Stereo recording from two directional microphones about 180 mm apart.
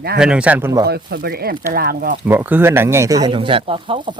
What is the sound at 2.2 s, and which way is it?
Speech, 10° right (ahead or behind).